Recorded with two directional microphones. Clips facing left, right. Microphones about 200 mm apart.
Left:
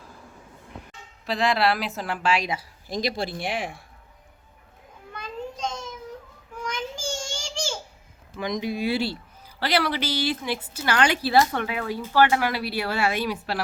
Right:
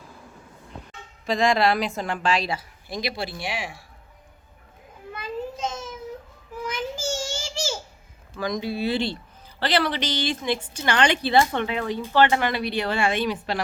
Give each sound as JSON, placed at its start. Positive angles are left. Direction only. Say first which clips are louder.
{"t": 1.3, "sound": "a woman's voice", "louder": "right 2 dB", "side_deg": 5}
{"t": 2.9, "sound": "speech", "louder": "left 2 dB", "side_deg": 45}
{"t": 5.1, "sound": "a sound", "louder": "right 3 dB", "side_deg": -5}
{"t": 8.4, "sound": "speech", "louder": "right 1 dB", "side_deg": 20}